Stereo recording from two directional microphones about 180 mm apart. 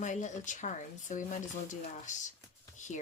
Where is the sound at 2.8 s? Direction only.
40° left (ahead or behind).